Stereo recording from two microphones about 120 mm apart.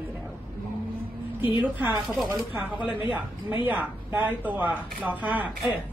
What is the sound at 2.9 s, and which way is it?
A woman's voice, 10° right (ahead or behind).